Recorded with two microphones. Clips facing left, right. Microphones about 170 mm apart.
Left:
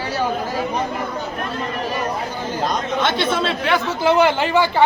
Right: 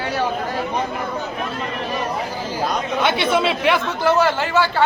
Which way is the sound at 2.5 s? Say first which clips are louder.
Left 1 dB; 10° right (ahead or behind).